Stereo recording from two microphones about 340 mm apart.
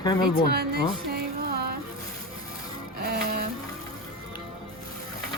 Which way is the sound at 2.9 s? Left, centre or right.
Right.